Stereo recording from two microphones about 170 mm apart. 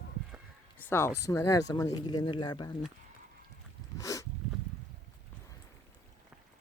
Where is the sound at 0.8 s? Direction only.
10° left (ahead or behind).